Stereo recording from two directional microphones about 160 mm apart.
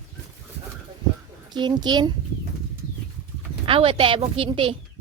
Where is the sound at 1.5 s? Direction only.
25° right (ahead or behind).